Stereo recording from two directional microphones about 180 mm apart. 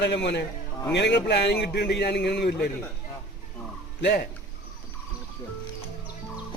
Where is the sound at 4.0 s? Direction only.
65° left (ahead or behind).